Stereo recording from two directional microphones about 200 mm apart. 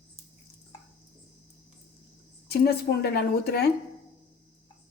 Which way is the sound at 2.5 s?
55° left (ahead or behind).